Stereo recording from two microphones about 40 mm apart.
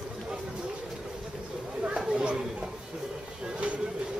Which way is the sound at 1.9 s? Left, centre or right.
Centre.